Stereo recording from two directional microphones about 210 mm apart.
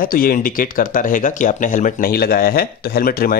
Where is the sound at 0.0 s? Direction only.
45° left (ahead or behind).